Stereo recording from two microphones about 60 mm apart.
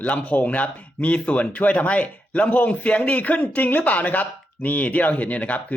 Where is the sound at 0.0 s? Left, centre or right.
Left.